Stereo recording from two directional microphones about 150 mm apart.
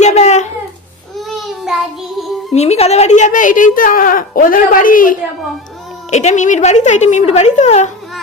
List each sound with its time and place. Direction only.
0.0 s a sound: 50° left (ahead or behind)
1.3 s child singing: centre (ahead or behind)
2.5 s speech: 45° left (ahead or behind); by 5.1 s 65° left (ahead or behind)
6.1 s a woman's voice: 50° left (ahead or behind)